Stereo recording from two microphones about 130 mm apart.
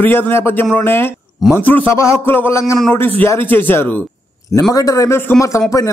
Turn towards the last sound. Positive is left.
turn(degrees=25)  # may be behind; listen again after turning